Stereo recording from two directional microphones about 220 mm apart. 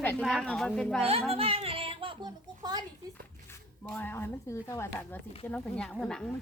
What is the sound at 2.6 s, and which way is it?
Speech, 15° right (ahead or behind).